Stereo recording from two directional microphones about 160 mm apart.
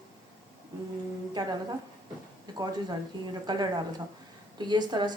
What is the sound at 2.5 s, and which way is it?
Speech, 25° right (ahead or behind).